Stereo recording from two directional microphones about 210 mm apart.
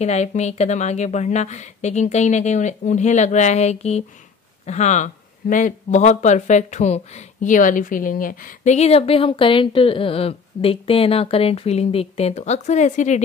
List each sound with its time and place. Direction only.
0.0 s speech: 30° left (ahead or behind)